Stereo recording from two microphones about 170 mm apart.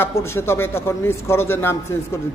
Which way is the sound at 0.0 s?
15° left (ahead or behind).